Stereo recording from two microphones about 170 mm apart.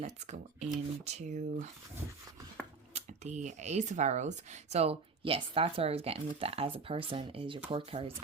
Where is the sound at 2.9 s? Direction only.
45° right (ahead or behind).